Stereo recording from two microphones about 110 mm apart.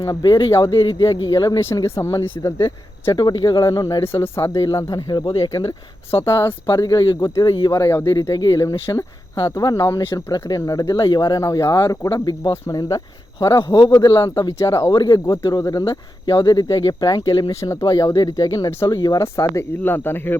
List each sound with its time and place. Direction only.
0.0 s speech: 35° left (ahead or behind)
3.2 s speech: 40° left (ahead or behind)
4.0 s speech: 25° left (ahead or behind)
6.7 s speech: 35° left (ahead or behind)
17.5 s speech: 30° left (ahead or behind)